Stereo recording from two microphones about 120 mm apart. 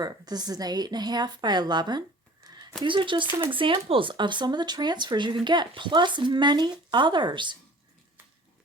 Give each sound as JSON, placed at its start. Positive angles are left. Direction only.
{"t": 0.0, "sound": "a woman's voice", "side_deg": -35}